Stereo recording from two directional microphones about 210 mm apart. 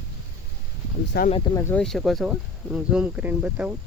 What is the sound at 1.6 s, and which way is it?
Speech, 10° left (ahead or behind).